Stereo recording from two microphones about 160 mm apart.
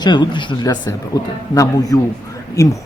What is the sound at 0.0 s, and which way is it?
Speech, 30° left (ahead or behind).